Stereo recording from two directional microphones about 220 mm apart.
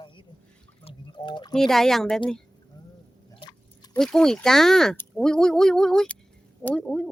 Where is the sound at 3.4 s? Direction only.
20° left (ahead or behind).